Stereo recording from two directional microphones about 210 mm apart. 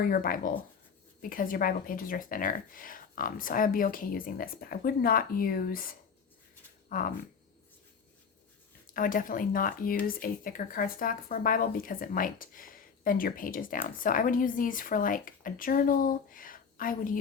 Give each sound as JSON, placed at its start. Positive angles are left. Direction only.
{"t": 0.0, "sound": "speech", "side_deg": 45}
{"t": 8.9, "sound": "speech", "side_deg": 40}